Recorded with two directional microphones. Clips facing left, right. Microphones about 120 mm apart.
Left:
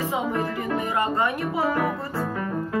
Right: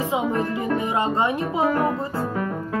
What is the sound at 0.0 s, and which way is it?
Music, 15° right (ahead or behind).